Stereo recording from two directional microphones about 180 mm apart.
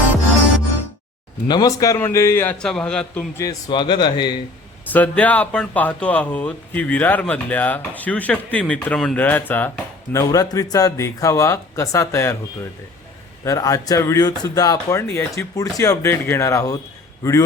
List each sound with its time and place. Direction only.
1.5 s speech: 20° left (ahead or behind); by 3.2 s 5° left (ahead or behind)
3.3 s a man's voice: 20° left (ahead or behind)
4.9 s speech: 10° left (ahead or behind)
13.4 s speech: 15° left (ahead or behind)